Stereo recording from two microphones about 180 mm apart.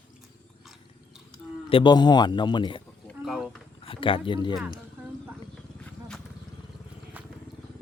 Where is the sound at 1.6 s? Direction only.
25° left (ahead or behind).